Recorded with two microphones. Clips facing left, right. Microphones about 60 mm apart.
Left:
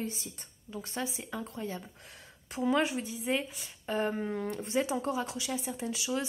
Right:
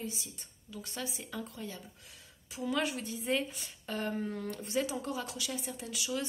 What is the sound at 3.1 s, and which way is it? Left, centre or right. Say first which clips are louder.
Speech: left 1 dB; centre.